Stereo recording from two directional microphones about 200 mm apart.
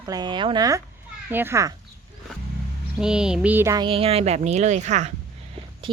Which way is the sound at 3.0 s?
5° right (ahead or behind).